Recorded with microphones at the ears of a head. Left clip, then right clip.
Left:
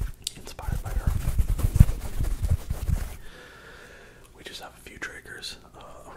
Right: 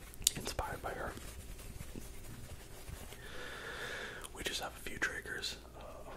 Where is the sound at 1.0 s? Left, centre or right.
Left.